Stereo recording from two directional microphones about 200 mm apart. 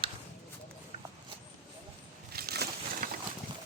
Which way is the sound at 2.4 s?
50° right (ahead or behind).